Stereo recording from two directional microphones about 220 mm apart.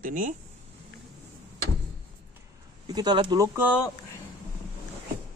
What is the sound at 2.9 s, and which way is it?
Speech, 20° right (ahead or behind).